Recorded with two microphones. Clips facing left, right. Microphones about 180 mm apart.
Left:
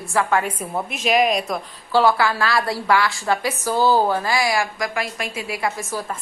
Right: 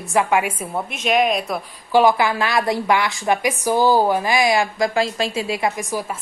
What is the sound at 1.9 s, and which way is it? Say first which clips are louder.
A woman's voice: right 2 dB; 15° right (ahead or behind).